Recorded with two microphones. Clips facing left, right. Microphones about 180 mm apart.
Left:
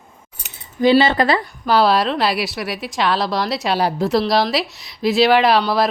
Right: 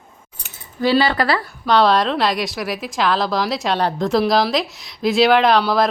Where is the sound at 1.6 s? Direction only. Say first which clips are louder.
Right 1 dB; 5° left (ahead or behind).